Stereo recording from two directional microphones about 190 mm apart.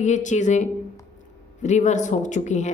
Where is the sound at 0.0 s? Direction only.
40° left (ahead or behind).